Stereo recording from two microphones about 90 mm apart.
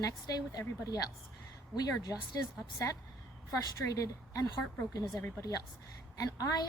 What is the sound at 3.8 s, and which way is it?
Speech, 35° left (ahead or behind).